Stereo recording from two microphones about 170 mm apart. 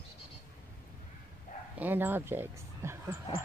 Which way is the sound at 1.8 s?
10° right (ahead or behind).